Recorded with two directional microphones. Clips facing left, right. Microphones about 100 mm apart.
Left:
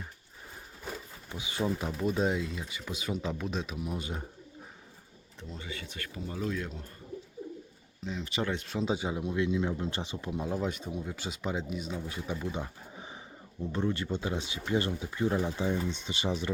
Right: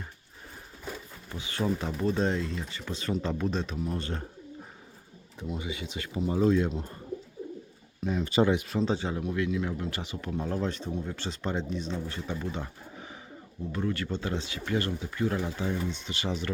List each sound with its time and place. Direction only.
1.4 s speech: 15° left (ahead or behind)
5.5 s speech: 15° right (ahead or behind)
8.0 s speech: 50° right (ahead or behind)
8.6 s speech: 5° left (ahead or behind); by 16.5 s 20° left (ahead or behind)